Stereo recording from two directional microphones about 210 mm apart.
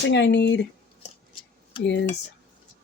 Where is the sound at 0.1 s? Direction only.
55° left (ahead or behind).